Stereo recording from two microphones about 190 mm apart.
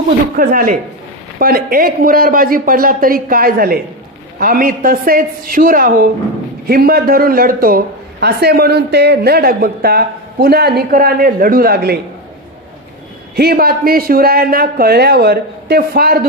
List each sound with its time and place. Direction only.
0.3 s a man's voice: 50° right (ahead or behind)
13.3 s a man's voice: 55° right (ahead or behind)